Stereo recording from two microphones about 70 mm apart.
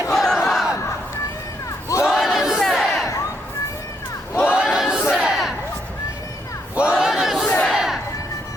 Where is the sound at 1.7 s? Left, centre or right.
Left.